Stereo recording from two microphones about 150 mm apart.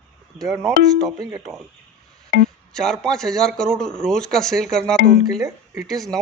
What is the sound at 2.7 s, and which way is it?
A man's voice, 5° left (ahead or behind).